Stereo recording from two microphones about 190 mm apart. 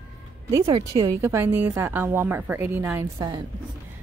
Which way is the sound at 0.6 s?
30° right (ahead or behind).